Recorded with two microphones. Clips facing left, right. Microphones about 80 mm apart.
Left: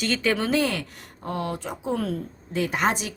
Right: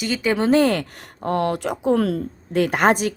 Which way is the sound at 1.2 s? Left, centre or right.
Right.